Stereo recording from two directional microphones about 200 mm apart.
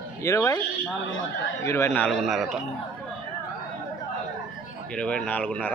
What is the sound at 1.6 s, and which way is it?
Speech, 10° left (ahead or behind).